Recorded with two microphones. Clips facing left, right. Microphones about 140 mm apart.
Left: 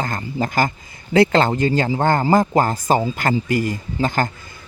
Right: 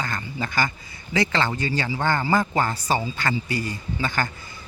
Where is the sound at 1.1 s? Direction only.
55° left (ahead or behind).